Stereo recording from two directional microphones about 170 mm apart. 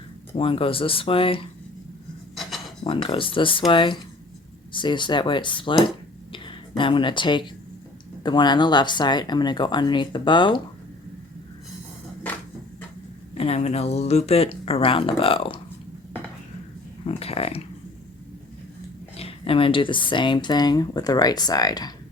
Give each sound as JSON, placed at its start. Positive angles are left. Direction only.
{"t": 0.3, "sound": "speech", "side_deg": 30}
{"t": 2.3, "sound": "filing", "side_deg": 0}
{"t": 2.8, "sound": "speech", "side_deg": 35}
{"t": 6.3, "sound": "a sound", "side_deg": 30}
{"t": 8.2, "sound": "speech", "side_deg": 25}
{"t": 13.3, "sound": "speech", "side_deg": 35}
{"t": 17.1, "sound": "speech", "side_deg": 35}
{"t": 19.1, "sound": "speech", "side_deg": 35}